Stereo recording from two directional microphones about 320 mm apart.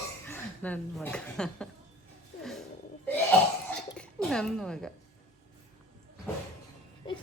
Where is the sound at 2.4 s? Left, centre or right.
Centre.